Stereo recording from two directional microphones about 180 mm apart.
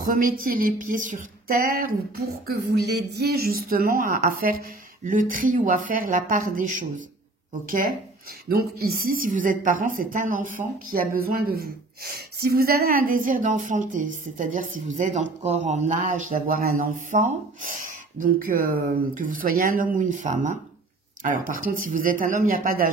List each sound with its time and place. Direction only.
0.0 s a woman's voice: 50° right (ahead or behind)
2.4 s a woman's voice: 65° right (ahead or behind)